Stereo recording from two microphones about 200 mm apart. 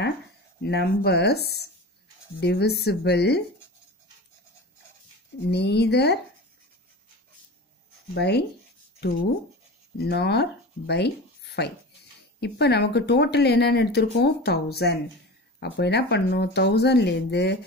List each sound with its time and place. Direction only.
0.6 s speech: 55° left (ahead or behind)
5.5 s speech: 55° left (ahead or behind)
8.1 s speech: 55° left (ahead or behind)
9.9 s speech: 55° left (ahead or behind)